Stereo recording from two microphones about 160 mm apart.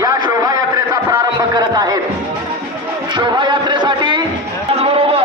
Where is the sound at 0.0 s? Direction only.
25° right (ahead or behind).